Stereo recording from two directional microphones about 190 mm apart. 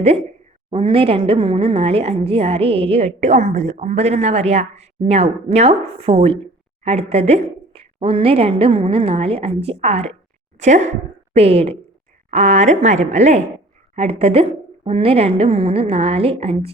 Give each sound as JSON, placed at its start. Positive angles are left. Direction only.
{"t": 0.7, "sound": "a woman's voice", "side_deg": -30}